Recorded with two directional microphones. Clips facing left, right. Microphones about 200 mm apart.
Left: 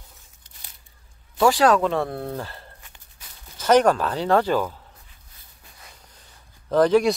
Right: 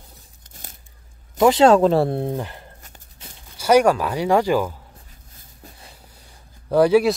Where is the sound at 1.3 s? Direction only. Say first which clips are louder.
Right 4 dB; 20° right (ahead or behind).